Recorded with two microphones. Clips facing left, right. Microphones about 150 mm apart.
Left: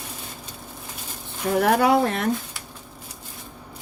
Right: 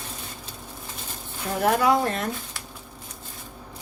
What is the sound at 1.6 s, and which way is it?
Speech, 65° left (ahead or behind).